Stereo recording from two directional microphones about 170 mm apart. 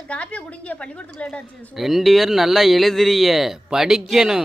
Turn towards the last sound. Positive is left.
turn(degrees=-5)  # may be behind; listen again after turning